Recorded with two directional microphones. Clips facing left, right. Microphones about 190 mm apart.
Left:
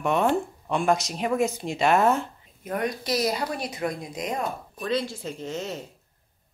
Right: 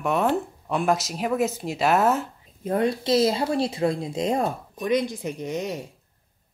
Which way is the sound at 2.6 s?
30° right (ahead or behind).